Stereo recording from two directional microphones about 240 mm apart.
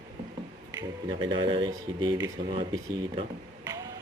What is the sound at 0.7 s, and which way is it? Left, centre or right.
Speech, centre.